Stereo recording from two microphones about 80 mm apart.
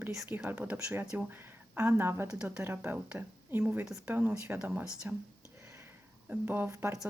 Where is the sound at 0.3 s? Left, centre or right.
Right.